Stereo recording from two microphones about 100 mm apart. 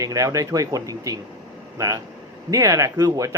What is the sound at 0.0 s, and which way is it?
A man's voice, 35° right (ahead or behind).